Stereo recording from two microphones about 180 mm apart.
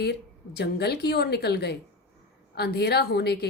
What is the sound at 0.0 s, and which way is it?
A woman's voice, 65° left (ahead or behind).